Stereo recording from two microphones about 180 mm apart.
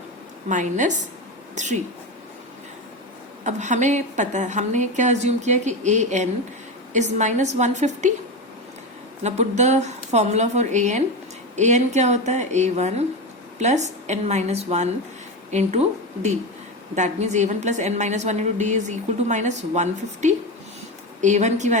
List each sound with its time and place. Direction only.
0.4 s a woman's voice: 45° right (ahead or behind)
3.4 s a woman's voice: 40° right (ahead or behind)
9.2 s a woman's voice: 40° right (ahead or behind)